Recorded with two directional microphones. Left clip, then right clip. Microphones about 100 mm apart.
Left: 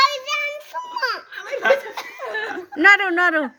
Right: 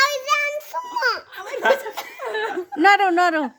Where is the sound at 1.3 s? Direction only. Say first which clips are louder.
Left 1 dB; 75° right (ahead or behind).